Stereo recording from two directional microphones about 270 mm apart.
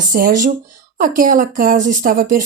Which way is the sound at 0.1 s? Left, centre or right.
Right.